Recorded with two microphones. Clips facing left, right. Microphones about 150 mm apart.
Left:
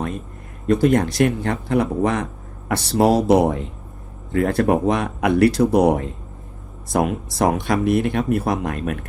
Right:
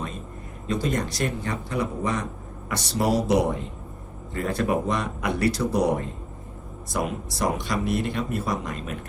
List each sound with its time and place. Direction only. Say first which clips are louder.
0.7 s speech: left 10 dB; 60° left (ahead or behind)